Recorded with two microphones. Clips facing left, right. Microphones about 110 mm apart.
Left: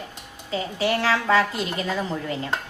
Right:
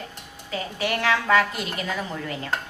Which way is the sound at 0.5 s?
25° left (ahead or behind).